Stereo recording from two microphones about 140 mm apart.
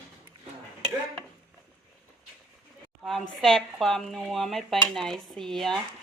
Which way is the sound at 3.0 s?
Centre (ahead or behind).